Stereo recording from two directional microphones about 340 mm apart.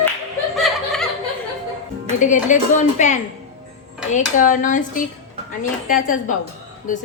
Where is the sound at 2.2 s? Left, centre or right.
Left.